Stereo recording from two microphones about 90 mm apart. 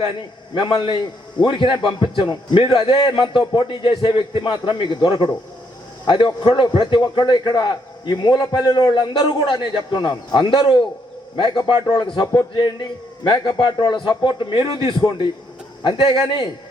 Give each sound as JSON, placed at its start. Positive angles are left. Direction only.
{"t": 0.5, "sound": "a man's voice", "side_deg": 60}
{"t": 2.3, "sound": "a man's voice", "side_deg": 55}
{"t": 2.8, "sound": "a man's voice", "side_deg": 75}